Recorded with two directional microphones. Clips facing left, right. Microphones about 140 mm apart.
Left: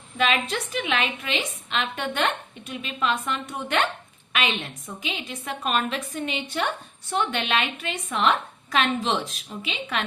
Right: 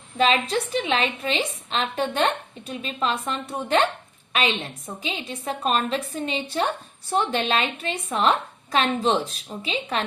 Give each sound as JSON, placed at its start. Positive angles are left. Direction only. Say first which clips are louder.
{"t": 0.2, "sound": "a woman's voice", "louder": "right 3 dB", "side_deg": -35}